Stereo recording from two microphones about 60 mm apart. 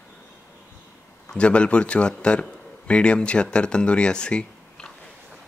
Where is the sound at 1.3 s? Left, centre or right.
Centre.